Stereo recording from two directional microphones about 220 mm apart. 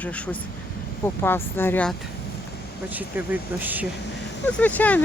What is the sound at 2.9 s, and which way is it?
Speech, 10° right (ahead or behind).